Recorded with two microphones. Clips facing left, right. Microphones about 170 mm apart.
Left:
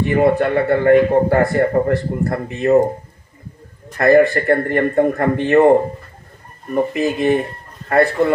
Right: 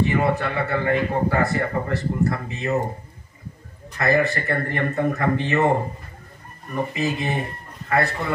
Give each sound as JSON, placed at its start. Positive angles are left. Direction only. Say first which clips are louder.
{"t": 0.0, "sound": "a man's voice", "louder": "left 7 dB", "side_deg": 55}
{"t": 4.0, "sound": "a man's voice", "louder": "left 9 dB", "side_deg": 55}